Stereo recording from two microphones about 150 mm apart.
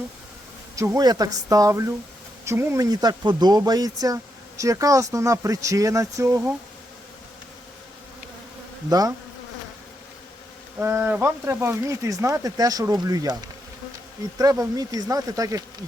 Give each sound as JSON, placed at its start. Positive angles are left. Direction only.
{"t": 0.8, "sound": "speech", "side_deg": -20}
{"t": 8.9, "sound": "speech", "side_deg": -25}
{"t": 10.8, "sound": "speech", "side_deg": -15}